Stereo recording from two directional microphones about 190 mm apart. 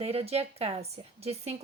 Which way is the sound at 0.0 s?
30° right (ahead or behind).